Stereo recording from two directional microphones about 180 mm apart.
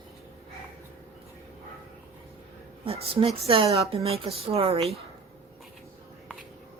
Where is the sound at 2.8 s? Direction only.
30° right (ahead or behind).